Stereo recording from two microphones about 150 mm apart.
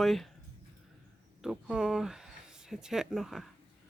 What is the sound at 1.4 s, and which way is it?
Speech, 5° right (ahead or behind).